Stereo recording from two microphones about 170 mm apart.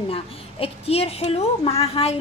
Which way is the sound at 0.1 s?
35° left (ahead or behind).